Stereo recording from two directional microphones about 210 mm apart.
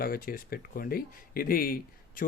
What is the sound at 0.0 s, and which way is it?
Speech, 45° left (ahead or behind).